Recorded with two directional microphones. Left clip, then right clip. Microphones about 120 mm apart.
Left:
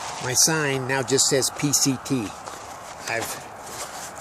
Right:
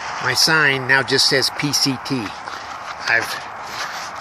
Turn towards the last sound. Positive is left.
turn(degrees=15)  # may be behind; listen again after turning